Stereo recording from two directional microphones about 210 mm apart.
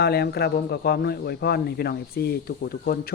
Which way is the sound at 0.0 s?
50° left (ahead or behind).